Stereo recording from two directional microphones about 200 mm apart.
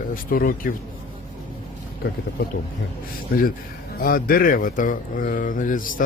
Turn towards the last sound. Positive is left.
turn(degrees=40)  # may be behind; listen again after turning